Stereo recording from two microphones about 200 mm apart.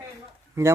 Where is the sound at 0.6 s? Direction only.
15° right (ahead or behind).